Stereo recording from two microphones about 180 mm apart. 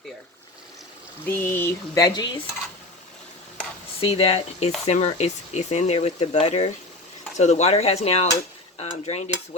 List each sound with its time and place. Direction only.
1.2 s speech: 10° left (ahead or behind)
2.0 s stir: 25° left (ahead or behind)
4.0 s speech: 35° left (ahead or behind)